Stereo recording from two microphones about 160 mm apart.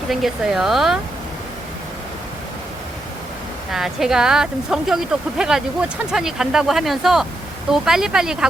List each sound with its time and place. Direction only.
0.1 s speech: centre (ahead or behind)
3.7 s speech: centre (ahead or behind)